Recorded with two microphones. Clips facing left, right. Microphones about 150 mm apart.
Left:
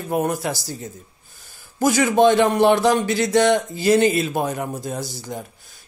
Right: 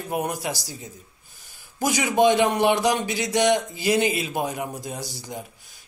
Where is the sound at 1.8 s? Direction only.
15° right (ahead or behind).